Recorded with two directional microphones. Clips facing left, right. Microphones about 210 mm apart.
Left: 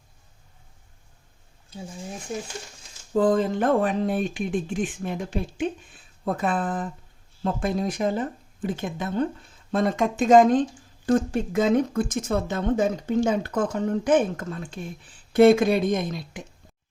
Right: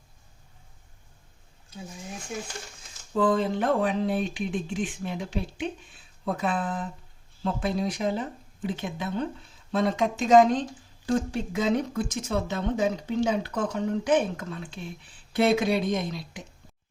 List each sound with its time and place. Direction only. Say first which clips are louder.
3.1 s speech: left 3 dB; 45° left (ahead or behind)